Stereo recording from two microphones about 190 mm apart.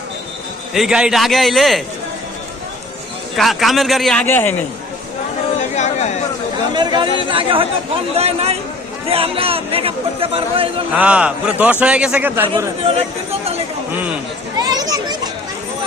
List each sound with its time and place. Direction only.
0.7 s a man's voice: centre (ahead or behind)
3.3 s a man's voice: centre (ahead or behind)
5.5 s chatter: 40° left (ahead or behind)
6.7 s a man's voice: 25° right (ahead or behind)
10.9 s a man's voice: 5° right (ahead or behind)
12.8 s a man's voice: 30° right (ahead or behind)
14.5 s children playing: 20° right (ahead or behind)